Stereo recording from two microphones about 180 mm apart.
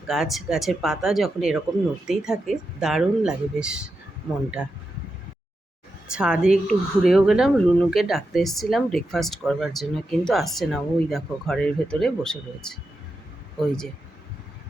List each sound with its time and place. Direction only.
0.1 s speech: centre (ahead or behind)
6.1 s speech: 5° right (ahead or behind)